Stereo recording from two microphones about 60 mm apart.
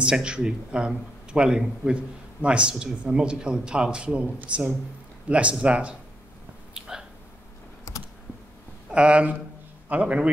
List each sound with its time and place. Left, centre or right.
0.0 s a man's voice: centre
5.3 s speech: right
6.9 s a sound: centre
7.9 s computer keyboard: left
8.9 s speech: centre